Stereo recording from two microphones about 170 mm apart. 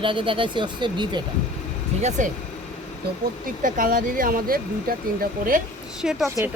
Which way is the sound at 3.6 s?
50° right (ahead or behind).